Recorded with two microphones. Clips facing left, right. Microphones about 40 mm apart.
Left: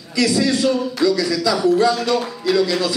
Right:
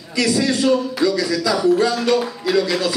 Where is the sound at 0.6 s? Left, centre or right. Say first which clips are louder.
Right 1 dB; centre.